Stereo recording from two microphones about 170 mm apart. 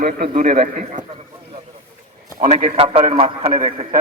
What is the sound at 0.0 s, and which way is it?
A man's voice, 55° right (ahead or behind).